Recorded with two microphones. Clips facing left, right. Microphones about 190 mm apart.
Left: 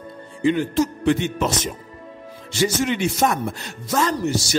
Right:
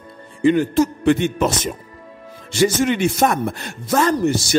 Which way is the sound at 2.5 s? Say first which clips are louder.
Right 4 dB; 55° right (ahead or behind).